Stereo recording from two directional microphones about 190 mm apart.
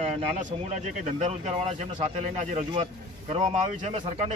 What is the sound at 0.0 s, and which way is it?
Speech, 40° right (ahead or behind).